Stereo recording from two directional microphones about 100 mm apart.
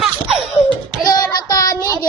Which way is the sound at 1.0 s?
40° left (ahead or behind).